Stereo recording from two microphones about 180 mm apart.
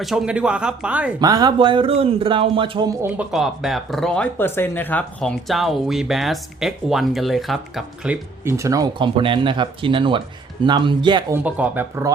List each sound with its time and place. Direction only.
0.0 s speech: centre (ahead or behind)
1.2 s speech: 20° right (ahead or behind)
3.0 s speech: 5° right (ahead or behind); by 11.3 s 25° right (ahead or behind)
11.4 s speech: 10° right (ahead or behind)